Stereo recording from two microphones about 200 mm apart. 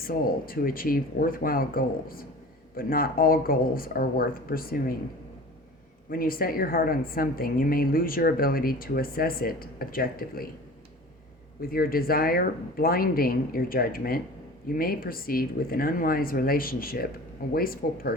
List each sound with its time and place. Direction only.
0.0 s a woman's voice: 45° left (ahead or behind)
6.1 s a woman's voice: 45° left (ahead or behind)
11.6 s a woman's voice: 45° left (ahead or behind)